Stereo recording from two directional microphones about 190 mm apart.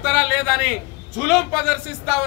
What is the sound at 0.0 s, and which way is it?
A man's voice, centre (ahead or behind).